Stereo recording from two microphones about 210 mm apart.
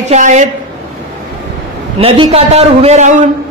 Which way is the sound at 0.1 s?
35° right (ahead or behind).